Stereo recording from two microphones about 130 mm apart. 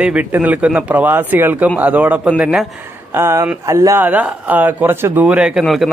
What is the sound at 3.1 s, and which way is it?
A man's voice, 20° right (ahead or behind).